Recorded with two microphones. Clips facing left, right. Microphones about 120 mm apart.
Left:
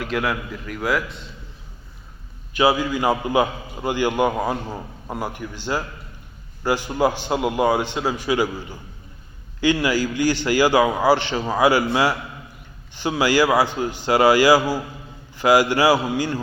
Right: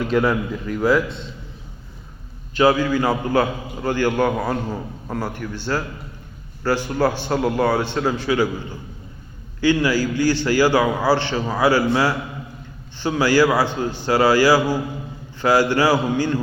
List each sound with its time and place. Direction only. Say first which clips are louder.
0.0 s a man's voice: right 5 dB; 5° left (ahead or behind)
2.5 s a man's voice: right 2 dB; 10° left (ahead or behind)
9.6 s a man's voice: right 2 dB; 15° left (ahead or behind)